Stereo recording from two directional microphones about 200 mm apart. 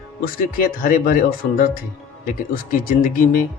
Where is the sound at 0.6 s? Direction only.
45° left (ahead or behind).